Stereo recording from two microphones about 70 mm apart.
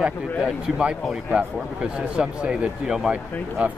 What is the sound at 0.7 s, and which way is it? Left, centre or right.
Speech, centre.